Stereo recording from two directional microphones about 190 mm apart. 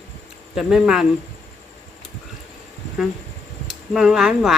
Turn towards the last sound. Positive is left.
turn(degrees=0)  # may be behind; listen again after turning